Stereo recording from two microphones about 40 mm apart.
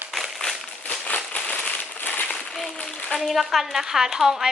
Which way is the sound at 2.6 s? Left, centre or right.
Centre.